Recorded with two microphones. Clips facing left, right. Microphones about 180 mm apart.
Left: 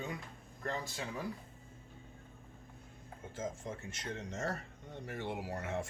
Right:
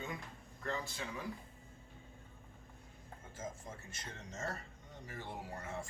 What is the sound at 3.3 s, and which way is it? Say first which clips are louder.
A man's voice: left 6 dB; 75° left (ahead or behind).